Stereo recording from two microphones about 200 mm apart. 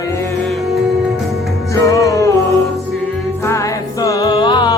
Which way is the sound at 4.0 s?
20° left (ahead or behind).